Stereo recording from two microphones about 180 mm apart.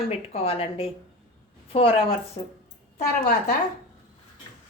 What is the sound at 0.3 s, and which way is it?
A woman's voice, 30° left (ahead or behind).